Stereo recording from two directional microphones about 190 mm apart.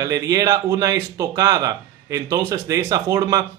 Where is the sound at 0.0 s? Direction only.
20° right (ahead or behind).